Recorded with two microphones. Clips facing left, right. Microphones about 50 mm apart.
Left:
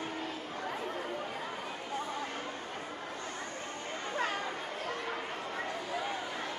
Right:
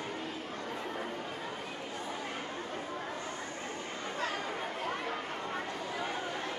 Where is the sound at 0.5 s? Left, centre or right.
Centre.